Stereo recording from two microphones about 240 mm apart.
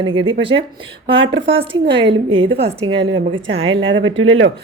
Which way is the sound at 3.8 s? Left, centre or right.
Right.